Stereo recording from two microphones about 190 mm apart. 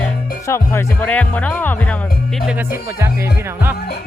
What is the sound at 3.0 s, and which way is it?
Speech, 15° right (ahead or behind).